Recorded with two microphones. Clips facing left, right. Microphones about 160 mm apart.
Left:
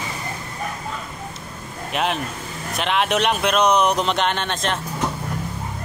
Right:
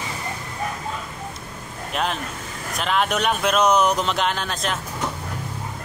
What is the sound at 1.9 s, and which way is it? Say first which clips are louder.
Speech: left 2 dB; 5° left (ahead or behind).